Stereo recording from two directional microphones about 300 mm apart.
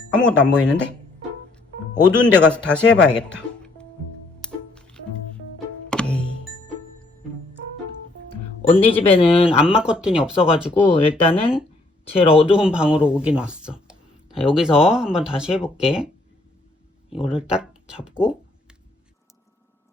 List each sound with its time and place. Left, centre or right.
0.1 s speech: centre
2.2 s speech: centre
4.4 s music: centre
9.0 s speech: centre
9.5 s speech: centre
11.3 s speech: centre
12.5 s speech: centre
17.1 s speech: centre